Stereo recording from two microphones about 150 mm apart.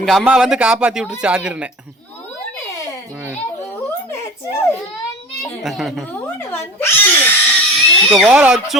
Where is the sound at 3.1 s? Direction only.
10° right (ahead or behind).